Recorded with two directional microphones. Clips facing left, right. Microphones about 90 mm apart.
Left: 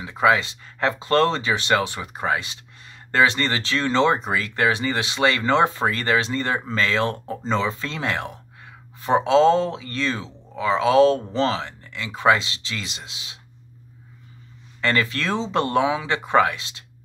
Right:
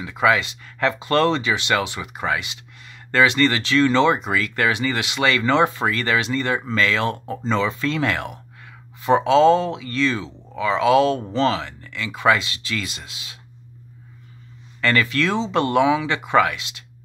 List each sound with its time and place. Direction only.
0.0 s speech: 30° left (ahead or behind)
14.8 s speech: 30° left (ahead or behind)